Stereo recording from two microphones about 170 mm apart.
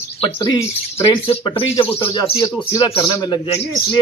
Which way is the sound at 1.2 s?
30° left (ahead or behind).